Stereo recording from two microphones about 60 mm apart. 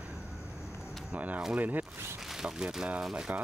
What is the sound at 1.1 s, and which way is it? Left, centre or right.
Speech, right.